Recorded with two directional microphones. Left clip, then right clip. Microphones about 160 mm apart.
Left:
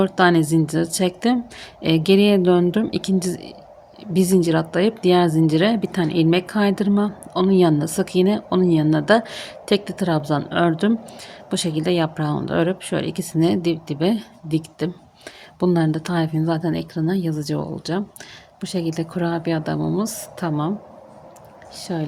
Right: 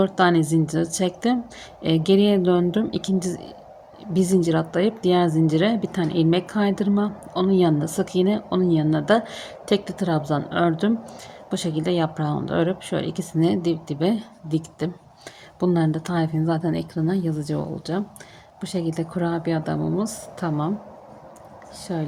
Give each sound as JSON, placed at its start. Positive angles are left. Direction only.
{"t": 0.0, "sound": "speech", "side_deg": 25}
{"t": 21.8, "sound": "speech", "side_deg": 20}